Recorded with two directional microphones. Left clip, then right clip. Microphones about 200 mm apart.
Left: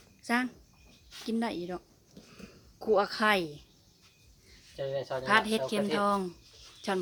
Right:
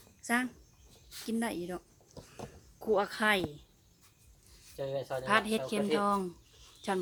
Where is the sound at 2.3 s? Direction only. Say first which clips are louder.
Right 6 dB; 5° left (ahead or behind).